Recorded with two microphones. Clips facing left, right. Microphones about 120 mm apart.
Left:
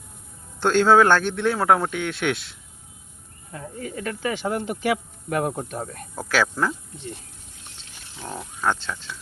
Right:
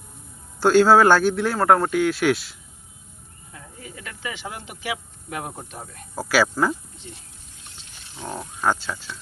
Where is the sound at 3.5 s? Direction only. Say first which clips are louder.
Left 9 dB; 45° left (ahead or behind).